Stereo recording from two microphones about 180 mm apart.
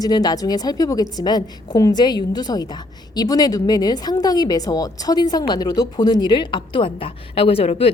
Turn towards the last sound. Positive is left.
turn(degrees=35)  # may be behind; listen again after turning